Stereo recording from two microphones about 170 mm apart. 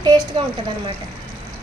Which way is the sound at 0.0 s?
25° right (ahead or behind).